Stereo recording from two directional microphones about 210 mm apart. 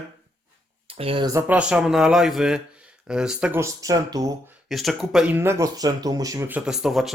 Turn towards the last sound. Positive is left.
turn(degrees=0)  # may be behind; listen again after turning